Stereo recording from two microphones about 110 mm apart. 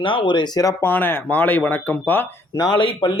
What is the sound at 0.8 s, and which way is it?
Speech, 20° left (ahead or behind).